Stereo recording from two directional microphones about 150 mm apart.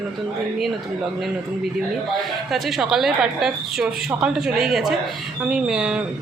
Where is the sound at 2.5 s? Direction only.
Centre (ahead or behind).